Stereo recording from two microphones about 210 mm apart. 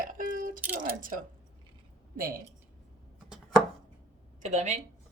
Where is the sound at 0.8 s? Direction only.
40° right (ahead or behind).